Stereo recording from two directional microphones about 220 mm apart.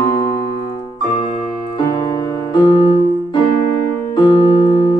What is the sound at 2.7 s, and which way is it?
Music, 25° left (ahead or behind).